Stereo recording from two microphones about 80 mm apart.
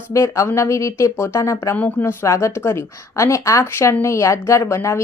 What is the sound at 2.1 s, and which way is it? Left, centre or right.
A woman's voice, left.